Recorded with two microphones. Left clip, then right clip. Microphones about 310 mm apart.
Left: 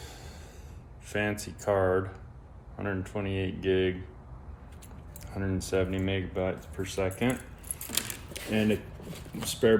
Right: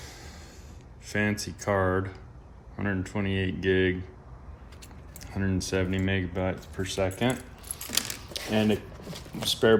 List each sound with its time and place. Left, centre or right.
0.0 s music: right
1.0 s speech: right
5.2 s speech: right
7.9 s keys jangling: centre
8.5 s speech: right
9.0 s a sound: centre